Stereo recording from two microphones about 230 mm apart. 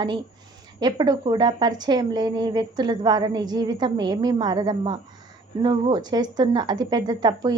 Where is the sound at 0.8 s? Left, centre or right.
Centre.